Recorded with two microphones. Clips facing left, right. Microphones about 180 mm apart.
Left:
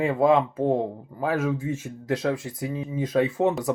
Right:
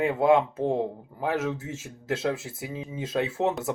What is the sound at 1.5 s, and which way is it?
Speech, 90° right.